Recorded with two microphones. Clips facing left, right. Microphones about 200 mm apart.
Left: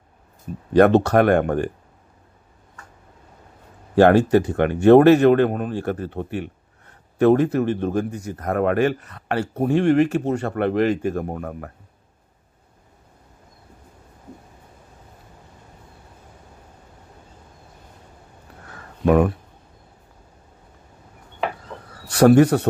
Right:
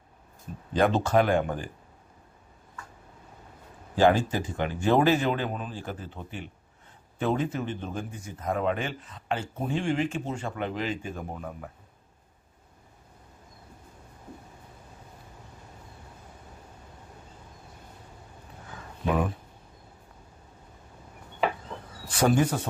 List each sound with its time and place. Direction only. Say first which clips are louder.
0.7 s speech: left 9 dB; 65° left (ahead or behind)
3.9 s speech: left 9 dB; 65° left (ahead or behind)
18.7 s a sound: left 11 dB; 60° left (ahead or behind)
22.1 s speech: left 11 dB; 65° left (ahead or behind)